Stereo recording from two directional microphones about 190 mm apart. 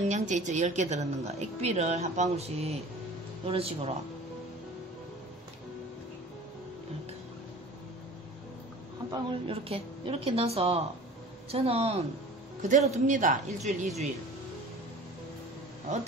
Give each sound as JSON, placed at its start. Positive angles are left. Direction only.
{"t": 0.1, "sound": "a woman's voice", "side_deg": -40}
{"t": 9.1, "sound": "a woman's voice", "side_deg": -25}